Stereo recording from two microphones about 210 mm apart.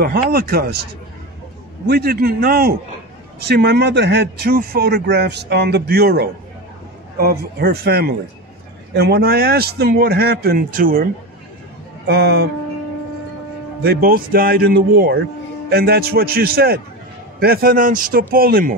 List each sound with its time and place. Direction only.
0.0 s a man's voice: 50° right (ahead or behind)
1.9 s a man's voice: 50° right (ahead or behind)
12.1 s a man's voice: 50° right (ahead or behind)
13.8 s a man's voice: 45° right (ahead or behind)